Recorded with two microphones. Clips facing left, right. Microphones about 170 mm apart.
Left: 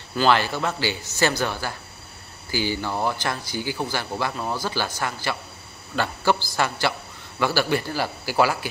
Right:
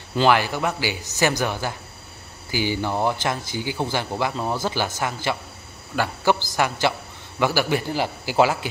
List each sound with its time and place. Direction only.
0.3 s speech: 15° right (ahead or behind)